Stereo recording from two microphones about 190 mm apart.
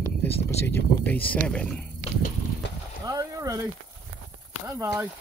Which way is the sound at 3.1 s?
20° right (ahead or behind).